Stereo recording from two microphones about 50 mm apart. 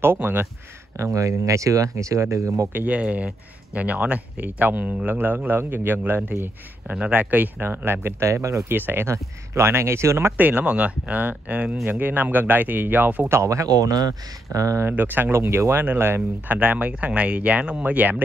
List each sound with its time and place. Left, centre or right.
0.2 s speech: right
0.9 s speech: right
2.7 s speech: right
3.0 s speech: right
7.6 s speech: right
8.3 s speech: right
8.7 s speech: right
9.0 s speech: right
10.3 s speech: right
10.6 s speech: right
13.3 s speech: right
14.9 s speech: right
16.5 s speech: right